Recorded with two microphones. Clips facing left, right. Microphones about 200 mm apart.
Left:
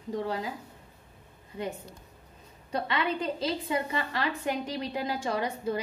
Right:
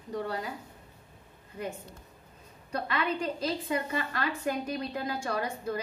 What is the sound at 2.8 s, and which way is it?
A woman's voice, 25° left (ahead or behind).